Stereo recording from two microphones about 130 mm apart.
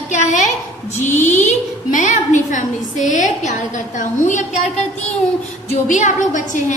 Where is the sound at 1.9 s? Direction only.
70° left (ahead or behind).